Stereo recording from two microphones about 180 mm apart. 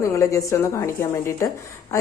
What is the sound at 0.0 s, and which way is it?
A woman's voice, 15° left (ahead or behind).